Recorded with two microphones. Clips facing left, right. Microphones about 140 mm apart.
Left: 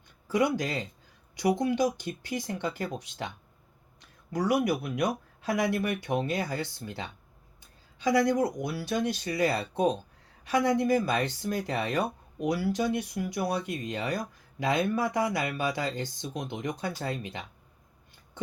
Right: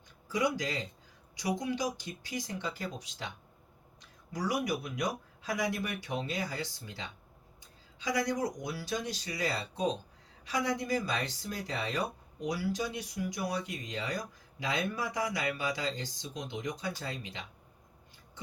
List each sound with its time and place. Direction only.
0.3 s speech: 60° left (ahead or behind)